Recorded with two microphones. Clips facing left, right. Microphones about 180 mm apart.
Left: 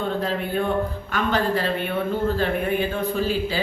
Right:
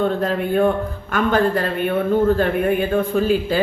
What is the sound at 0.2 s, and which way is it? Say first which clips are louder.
Speech: right 6 dB; 50° right (ahead or behind).